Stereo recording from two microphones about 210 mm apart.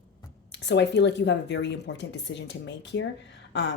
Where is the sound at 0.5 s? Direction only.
55° left (ahead or behind).